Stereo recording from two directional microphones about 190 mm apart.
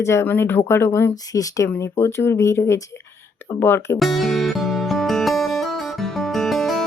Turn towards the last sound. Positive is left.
turn(degrees=0)  # may be behind; listen again after turning